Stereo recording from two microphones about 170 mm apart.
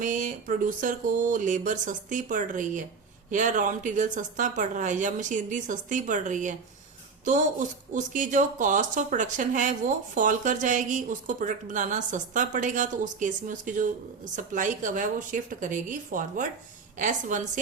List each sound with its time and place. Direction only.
0.0 s a woman's voice: 50° right (ahead or behind)